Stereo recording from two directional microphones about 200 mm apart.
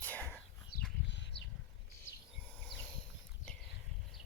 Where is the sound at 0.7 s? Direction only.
60° left (ahead or behind).